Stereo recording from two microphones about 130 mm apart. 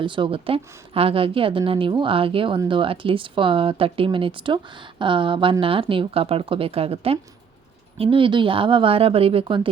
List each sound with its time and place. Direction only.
0.0 s speech: 40° right (ahead or behind)